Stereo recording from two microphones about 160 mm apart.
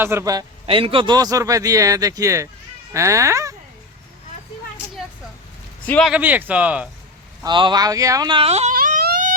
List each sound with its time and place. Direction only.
0.0 s a man's voice: 15° right (ahead or behind)
5.8 s speech: 10° left (ahead or behind)
6.1 s speech: 10° right (ahead or behind)
7.4 s a man's voice: 30° right (ahead or behind)
8.7 s baby cry: 65° right (ahead or behind)